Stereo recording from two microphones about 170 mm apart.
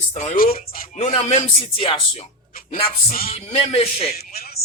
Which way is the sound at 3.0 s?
60° left (ahead or behind).